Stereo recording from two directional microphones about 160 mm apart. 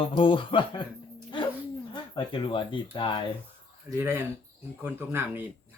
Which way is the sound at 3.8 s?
15° right (ahead or behind).